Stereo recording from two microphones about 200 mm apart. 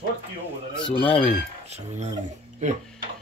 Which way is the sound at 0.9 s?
5° left (ahead or behind).